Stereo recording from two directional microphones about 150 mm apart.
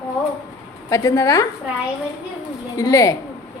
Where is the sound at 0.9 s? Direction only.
20° left (ahead or behind).